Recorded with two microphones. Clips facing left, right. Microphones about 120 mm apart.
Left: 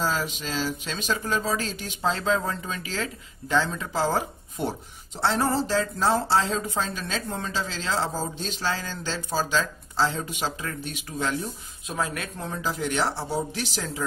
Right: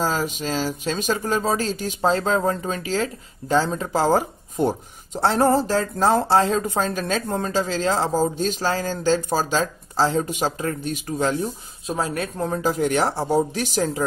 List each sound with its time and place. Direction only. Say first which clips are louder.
0.0 s speech: right 4 dB; 45° right (ahead or behind)